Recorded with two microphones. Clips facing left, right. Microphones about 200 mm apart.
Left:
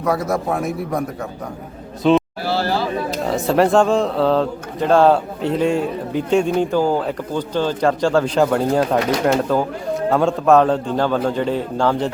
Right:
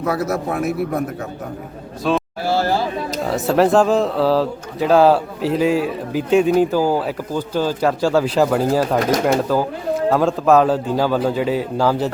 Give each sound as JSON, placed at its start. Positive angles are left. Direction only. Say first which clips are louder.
{"t": 0.0, "sound": "speech", "louder": "left 1 dB", "side_deg": -5}
{"t": 2.5, "sound": "a sound", "louder": "right 1 dB", "side_deg": -45}
{"t": 3.2, "sound": "speech", "louder": "right 1 dB", "side_deg": 0}